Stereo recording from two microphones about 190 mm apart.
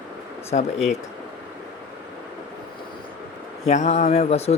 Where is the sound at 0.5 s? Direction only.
40° left (ahead or behind).